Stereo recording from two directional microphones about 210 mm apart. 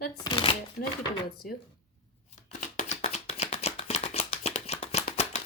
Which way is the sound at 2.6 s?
35° left (ahead or behind).